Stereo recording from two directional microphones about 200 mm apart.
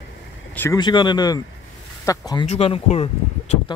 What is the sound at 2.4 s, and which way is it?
Speech, 30° left (ahead or behind).